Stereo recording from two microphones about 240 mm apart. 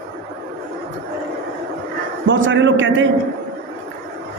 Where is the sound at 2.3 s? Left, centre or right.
Right.